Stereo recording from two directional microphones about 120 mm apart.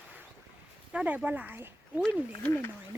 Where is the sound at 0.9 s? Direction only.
10° right (ahead or behind).